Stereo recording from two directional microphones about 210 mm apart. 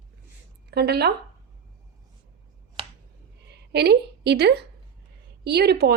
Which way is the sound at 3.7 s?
50° right (ahead or behind).